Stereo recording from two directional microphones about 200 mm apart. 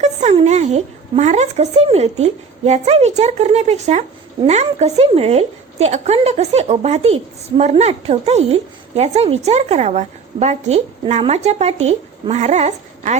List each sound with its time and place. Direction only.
0.0 s a woman's voice: 35° right (ahead or behind)